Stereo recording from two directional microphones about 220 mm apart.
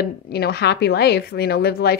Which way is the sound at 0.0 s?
45° left (ahead or behind).